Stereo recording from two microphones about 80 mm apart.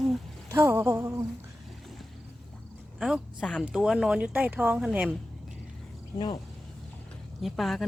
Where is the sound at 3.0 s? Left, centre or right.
Centre.